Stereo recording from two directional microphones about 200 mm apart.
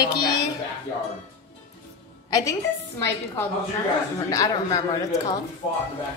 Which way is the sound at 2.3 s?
15° left (ahead or behind).